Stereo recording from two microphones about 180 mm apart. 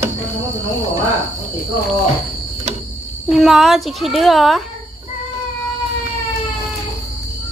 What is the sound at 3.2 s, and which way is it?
Speech, centre (ahead or behind).